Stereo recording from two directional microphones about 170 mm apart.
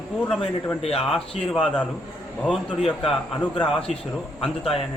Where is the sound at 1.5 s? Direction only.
5° left (ahead or behind).